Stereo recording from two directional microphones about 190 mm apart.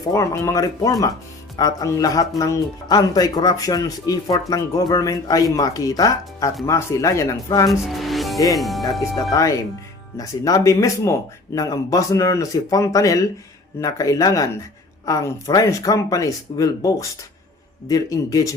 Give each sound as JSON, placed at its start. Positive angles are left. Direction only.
{"t": 0.1, "sound": "speech", "side_deg": 15}
{"t": 7.7, "sound": "music", "side_deg": 0}
{"t": 8.5, "sound": "speech", "side_deg": 0}
{"t": 9.3, "sound": "speech", "side_deg": 15}